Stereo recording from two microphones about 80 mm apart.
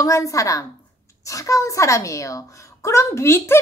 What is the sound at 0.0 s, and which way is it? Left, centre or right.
A woman's voice, left.